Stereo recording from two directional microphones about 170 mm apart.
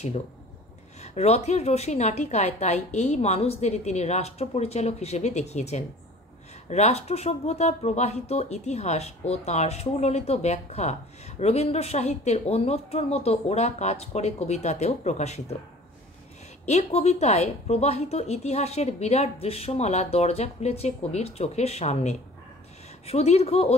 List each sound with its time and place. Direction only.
1.0 s speech: 40° left (ahead or behind)
16.6 s speech: 40° left (ahead or behind)